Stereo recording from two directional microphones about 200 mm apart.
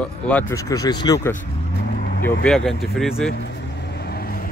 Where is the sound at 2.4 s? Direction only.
Centre (ahead or behind).